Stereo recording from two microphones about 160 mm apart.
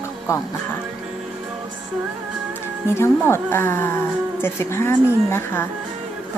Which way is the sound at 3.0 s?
15° left (ahead or behind).